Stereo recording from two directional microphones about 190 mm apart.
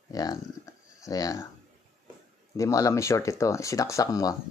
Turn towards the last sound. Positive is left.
turn(degrees=15)  # may be behind; listen again after turning